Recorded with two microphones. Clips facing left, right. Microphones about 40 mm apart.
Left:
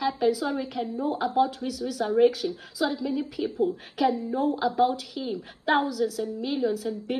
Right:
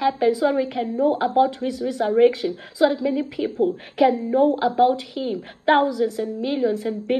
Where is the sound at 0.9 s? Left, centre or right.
Right.